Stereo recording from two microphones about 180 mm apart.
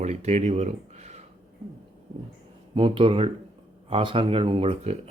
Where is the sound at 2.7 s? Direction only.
30° right (ahead or behind).